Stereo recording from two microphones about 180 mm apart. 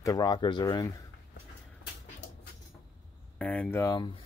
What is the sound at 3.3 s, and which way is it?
Speech, 10° left (ahead or behind).